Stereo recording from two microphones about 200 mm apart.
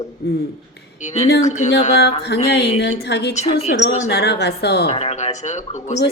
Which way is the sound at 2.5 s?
55° left (ahead or behind).